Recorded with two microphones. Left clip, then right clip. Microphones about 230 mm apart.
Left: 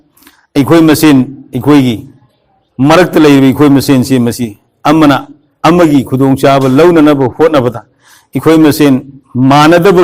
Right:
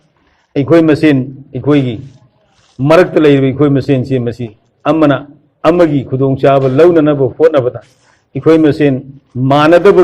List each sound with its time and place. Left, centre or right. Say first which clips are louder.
0.5 s a man's voice: left 2 dB; left